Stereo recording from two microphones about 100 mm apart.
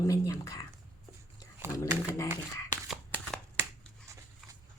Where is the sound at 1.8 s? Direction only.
30° left (ahead or behind).